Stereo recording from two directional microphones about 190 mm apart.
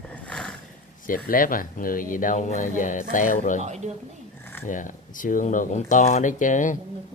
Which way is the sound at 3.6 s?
35° right (ahead or behind).